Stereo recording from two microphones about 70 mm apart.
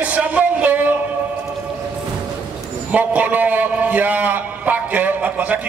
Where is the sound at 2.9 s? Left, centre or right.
Right.